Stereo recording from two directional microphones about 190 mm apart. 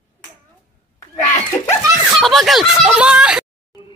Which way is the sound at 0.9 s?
15° left (ahead or behind).